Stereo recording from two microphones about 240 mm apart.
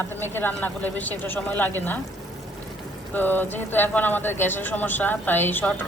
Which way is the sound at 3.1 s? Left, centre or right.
Centre.